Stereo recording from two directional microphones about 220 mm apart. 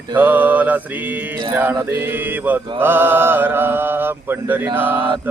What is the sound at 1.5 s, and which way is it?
Speech, 10° right (ahead or behind).